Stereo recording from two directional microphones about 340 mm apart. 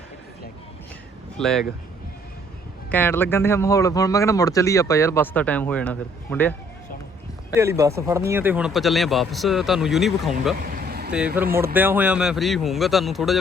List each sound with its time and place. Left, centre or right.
1.4 s speech: centre
2.9 s speech: centre
7.5 s speech: centre
10.6 s vehicle: right
11.5 s speech: centre